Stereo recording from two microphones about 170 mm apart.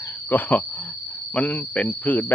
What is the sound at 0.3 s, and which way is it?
Speech, 10° left (ahead or behind).